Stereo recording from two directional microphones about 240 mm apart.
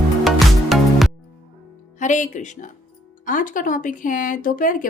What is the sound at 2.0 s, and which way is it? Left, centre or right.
Music, left.